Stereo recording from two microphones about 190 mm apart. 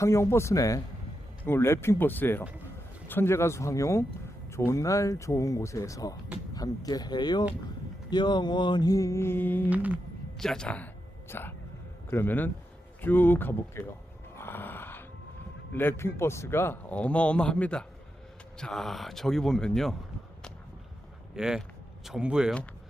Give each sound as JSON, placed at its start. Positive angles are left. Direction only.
{"t": 0.0, "sound": "a man's voice", "side_deg": 15}
{"t": 6.5, "sound": "mantra", "side_deg": 20}
{"t": 9.6, "sound": "humming", "side_deg": -10}
{"t": 10.3, "sound": "a man's voice", "side_deg": 5}
{"t": 14.3, "sound": "a sound", "side_deg": 10}
{"t": 15.7, "sound": "a man's voice", "side_deg": 10}
{"t": 21.3, "sound": "speech", "side_deg": -5}